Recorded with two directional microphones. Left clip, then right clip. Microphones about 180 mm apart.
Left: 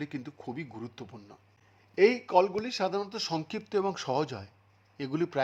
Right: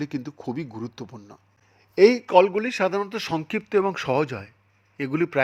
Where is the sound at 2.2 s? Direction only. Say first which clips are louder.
Right 8 dB; 10° right (ahead or behind).